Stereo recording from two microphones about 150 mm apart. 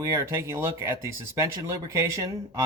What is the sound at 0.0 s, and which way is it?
Speech, 20° right (ahead or behind).